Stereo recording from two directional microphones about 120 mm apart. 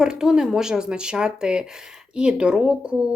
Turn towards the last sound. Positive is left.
turn(degrees=-10)  # may be behind; listen again after turning